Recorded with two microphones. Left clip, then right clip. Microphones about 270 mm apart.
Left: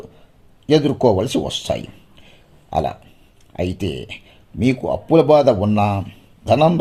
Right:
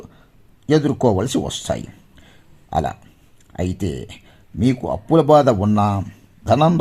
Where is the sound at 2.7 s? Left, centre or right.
Right.